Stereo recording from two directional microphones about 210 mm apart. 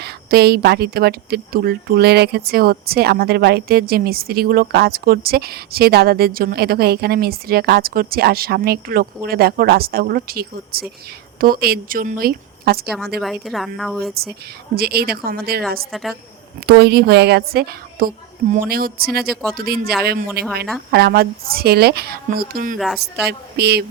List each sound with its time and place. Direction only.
0.0 s speech: 50° right (ahead or behind)
13.1 s speech: centre (ahead or behind)
14.8 s speech: 50° right (ahead or behind)
15.9 s speech: centre (ahead or behind)
16.6 s speech: 50° right (ahead or behind)